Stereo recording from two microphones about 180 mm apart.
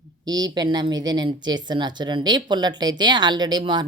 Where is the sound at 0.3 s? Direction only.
20° right (ahead or behind).